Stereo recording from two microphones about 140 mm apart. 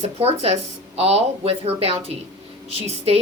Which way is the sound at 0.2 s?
45° right (ahead or behind).